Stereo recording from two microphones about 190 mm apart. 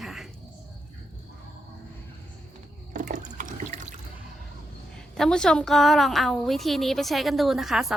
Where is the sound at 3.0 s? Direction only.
45° right (ahead or behind).